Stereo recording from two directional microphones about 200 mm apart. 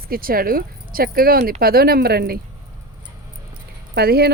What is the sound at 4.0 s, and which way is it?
Speech, 50° right (ahead or behind).